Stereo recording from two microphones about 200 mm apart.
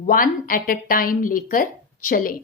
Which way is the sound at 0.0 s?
45° left (ahead or behind).